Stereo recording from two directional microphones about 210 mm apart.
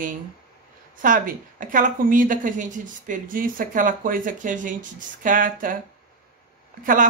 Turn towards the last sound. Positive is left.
turn(degrees=-40)  # may be behind; listen again after turning